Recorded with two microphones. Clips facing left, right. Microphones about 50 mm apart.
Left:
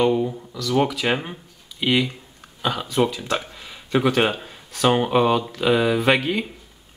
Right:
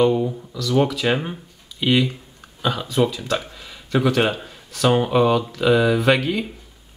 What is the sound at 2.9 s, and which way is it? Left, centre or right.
Speech, centre.